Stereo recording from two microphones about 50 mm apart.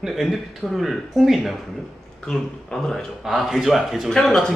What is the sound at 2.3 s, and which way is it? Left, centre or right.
Speech, centre.